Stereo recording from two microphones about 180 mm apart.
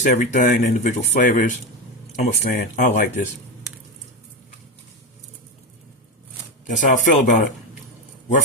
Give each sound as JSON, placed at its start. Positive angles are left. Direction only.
{"t": 0.0, "sound": "speech", "side_deg": 45}
{"t": 6.7, "sound": "speech", "side_deg": 45}